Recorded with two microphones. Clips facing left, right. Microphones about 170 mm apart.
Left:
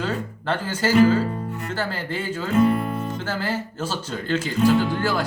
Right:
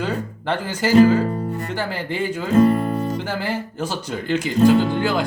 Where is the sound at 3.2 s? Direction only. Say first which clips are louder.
Right 2 dB; 15° right (ahead or behind).